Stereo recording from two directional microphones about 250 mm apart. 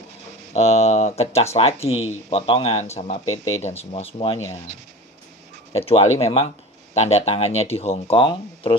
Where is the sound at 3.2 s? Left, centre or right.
Left.